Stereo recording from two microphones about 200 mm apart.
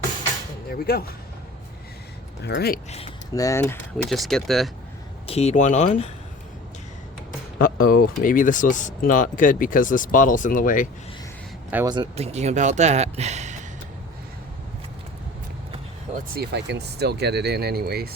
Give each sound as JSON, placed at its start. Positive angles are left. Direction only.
{"t": 0.7, "sound": "speech", "side_deg": 50}
{"t": 2.4, "sound": "speech", "side_deg": 55}
{"t": 3.3, "sound": "speech", "side_deg": 15}
{"t": 3.9, "sound": "speech", "side_deg": 0}
{"t": 5.2, "sound": "speech", "side_deg": 30}
{"t": 7.6, "sound": "speech", "side_deg": 45}
{"t": 11.9, "sound": "speech", "side_deg": -25}
{"t": 16.3, "sound": "speech", "side_deg": -55}